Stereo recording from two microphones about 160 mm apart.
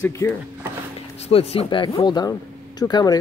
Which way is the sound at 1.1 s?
40° left (ahead or behind).